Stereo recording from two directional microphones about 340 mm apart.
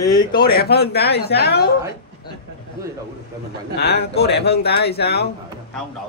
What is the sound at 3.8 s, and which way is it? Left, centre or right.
Speech, left.